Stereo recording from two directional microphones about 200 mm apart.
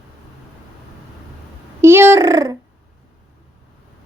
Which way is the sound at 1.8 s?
10° right (ahead or behind).